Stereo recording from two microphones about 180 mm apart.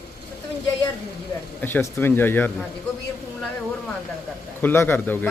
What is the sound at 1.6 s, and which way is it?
Speech, 10° left (ahead or behind).